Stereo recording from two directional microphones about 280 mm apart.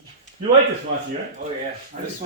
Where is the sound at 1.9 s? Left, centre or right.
Right.